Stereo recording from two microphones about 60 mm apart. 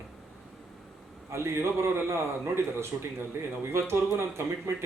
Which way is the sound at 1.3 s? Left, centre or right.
Right.